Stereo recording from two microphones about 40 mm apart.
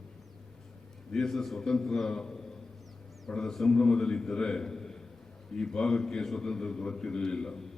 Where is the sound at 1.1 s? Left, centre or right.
Centre.